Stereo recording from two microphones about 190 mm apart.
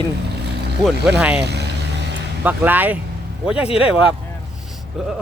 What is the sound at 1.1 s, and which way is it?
Speech, 5° right (ahead or behind).